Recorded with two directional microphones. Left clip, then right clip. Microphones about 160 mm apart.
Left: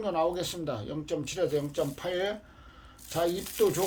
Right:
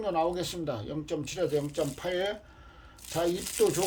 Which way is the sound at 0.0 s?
5° right (ahead or behind).